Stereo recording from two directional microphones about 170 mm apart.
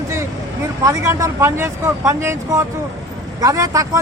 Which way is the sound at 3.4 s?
20° right (ahead or behind).